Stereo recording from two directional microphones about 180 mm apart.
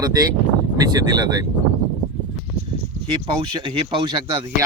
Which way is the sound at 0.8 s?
20° right (ahead or behind).